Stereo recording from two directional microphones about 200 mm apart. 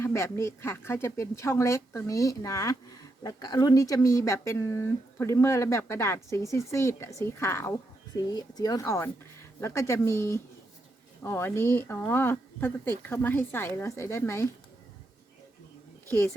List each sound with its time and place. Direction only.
0.0 s speech: 15° left (ahead or behind)